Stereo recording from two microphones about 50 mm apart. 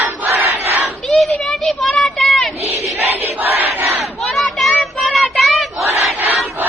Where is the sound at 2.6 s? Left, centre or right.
Right.